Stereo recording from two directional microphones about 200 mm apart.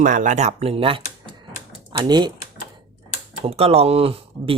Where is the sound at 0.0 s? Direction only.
40° right (ahead or behind); by 2.3 s 20° right (ahead or behind).